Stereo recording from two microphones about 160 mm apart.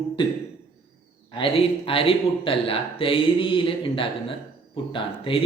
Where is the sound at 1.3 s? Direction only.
35° left (ahead or behind).